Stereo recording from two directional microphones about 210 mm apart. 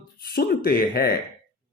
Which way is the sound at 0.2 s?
45° left (ahead or behind).